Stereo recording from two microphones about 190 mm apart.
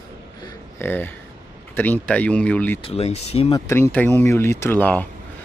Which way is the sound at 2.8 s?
30° left (ahead or behind).